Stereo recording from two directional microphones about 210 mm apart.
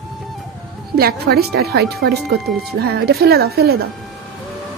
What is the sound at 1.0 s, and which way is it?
Speech, 50° right (ahead or behind).